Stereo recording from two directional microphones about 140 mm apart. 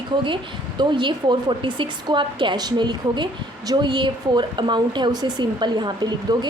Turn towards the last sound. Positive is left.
turn(degrees=-30)  # may be behind; listen again after turning